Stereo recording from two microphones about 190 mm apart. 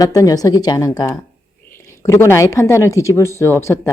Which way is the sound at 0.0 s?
20° left (ahead or behind).